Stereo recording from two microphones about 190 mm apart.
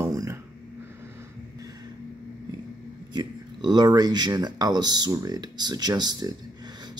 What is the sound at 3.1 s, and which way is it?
Speech, 25° right (ahead or behind).